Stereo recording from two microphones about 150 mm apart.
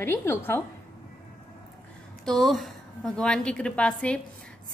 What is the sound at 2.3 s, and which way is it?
A woman's voice, centre (ahead or behind).